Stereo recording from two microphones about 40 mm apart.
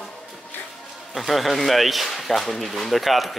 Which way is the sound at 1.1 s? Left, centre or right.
Centre.